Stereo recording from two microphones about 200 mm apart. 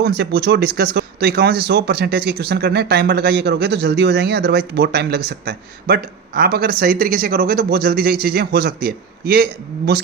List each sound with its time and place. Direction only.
0.0 s speech: 55° right (ahead or behind)